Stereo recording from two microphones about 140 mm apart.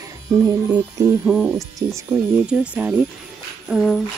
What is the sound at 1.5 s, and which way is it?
Speech, 25° right (ahead or behind).